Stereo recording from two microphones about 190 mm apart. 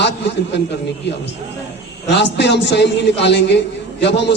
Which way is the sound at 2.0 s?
65° left (ahead or behind).